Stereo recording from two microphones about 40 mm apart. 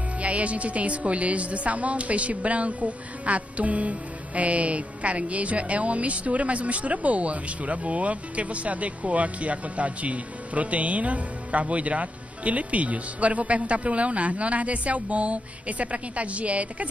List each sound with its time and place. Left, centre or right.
0.2 s speech: right